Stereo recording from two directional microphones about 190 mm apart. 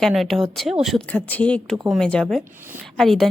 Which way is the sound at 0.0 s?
Centre (ahead or behind).